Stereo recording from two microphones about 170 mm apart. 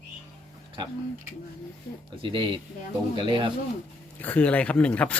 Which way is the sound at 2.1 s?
30° right (ahead or behind).